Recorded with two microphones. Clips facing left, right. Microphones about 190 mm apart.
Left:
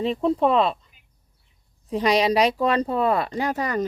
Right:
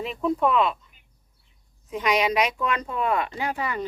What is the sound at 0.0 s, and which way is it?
Speech, 30° left (ahead or behind).